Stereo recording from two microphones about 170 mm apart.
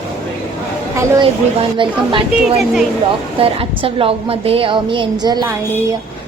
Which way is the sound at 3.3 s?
35° right (ahead or behind).